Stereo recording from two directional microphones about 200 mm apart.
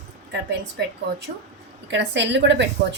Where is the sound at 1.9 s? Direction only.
65° right (ahead or behind).